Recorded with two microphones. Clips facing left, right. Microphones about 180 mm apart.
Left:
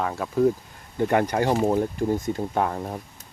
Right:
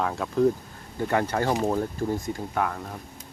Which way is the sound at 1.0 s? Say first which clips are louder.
Left 3 dB; 20° left (ahead or behind).